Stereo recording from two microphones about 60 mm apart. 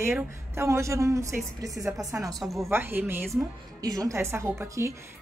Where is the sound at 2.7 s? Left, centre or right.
Right.